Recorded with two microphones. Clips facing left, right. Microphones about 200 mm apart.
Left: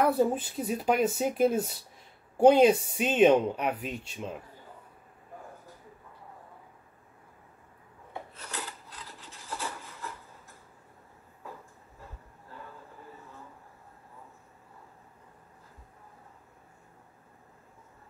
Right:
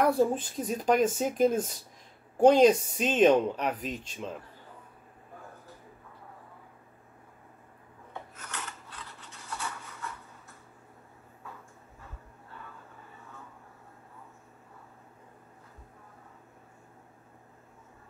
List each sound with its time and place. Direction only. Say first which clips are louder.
0.0 s speech: even; 5° left (ahead or behind)
8.4 s filing: left 2 dB; 35° left (ahead or behind)